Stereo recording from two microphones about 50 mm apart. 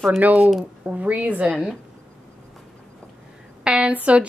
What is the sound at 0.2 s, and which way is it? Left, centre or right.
Speech, right.